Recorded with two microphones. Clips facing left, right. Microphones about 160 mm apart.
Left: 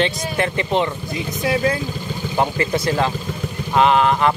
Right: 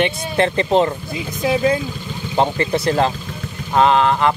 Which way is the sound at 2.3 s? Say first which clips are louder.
Right 2 dB; 25° right (ahead or behind).